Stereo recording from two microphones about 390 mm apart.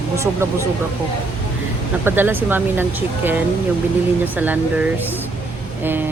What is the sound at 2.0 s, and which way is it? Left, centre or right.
Speech, centre.